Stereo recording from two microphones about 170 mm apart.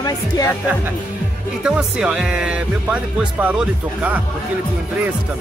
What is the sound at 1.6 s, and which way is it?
Speech, 5° right (ahead or behind).